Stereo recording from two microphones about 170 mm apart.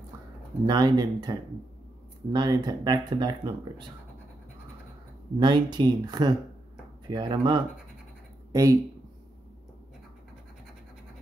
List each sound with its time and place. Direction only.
0.7 s speech: 25° right (ahead or behind)
5.4 s speech: 25° right (ahead or behind)